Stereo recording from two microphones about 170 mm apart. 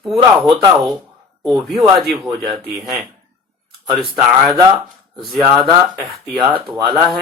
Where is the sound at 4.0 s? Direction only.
Centre (ahead or behind).